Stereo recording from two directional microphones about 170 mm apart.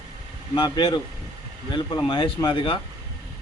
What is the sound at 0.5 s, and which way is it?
Speech, 30° left (ahead or behind).